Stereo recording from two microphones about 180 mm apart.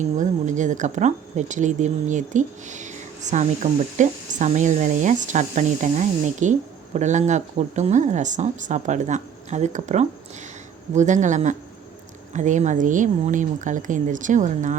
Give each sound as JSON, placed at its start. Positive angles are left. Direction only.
{"t": 0.2, "sound": "speech", "side_deg": -45}